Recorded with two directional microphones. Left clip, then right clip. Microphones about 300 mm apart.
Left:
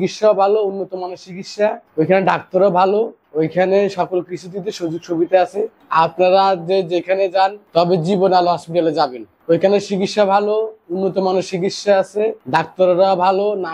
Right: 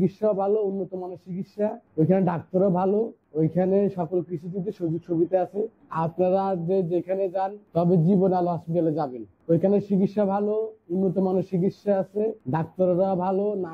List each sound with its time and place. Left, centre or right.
0.0 s speech: centre
0.7 s a man's voice: left
1.0 s speech: centre
10.6 s speech: left
11.1 s speech: centre